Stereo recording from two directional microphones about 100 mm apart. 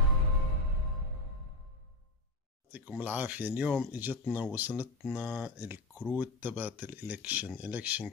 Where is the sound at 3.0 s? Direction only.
15° right (ahead or behind).